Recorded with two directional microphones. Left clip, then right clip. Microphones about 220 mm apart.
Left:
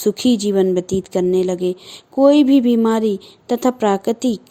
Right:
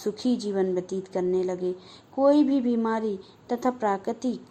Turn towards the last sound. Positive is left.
turn(degrees=45)  # may be behind; listen again after turning